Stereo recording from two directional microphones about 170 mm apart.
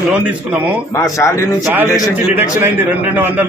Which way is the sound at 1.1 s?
15° left (ahead or behind).